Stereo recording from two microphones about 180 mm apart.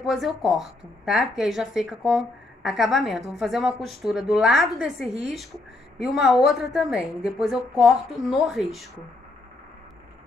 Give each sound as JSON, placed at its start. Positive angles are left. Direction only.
{"t": 0.0, "sound": "speech", "side_deg": 0}